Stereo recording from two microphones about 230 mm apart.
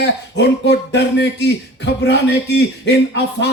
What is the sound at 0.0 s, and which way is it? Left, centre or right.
A man's voice, left.